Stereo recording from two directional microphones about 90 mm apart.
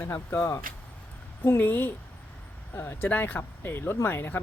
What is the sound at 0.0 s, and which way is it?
Speech, 30° left (ahead or behind).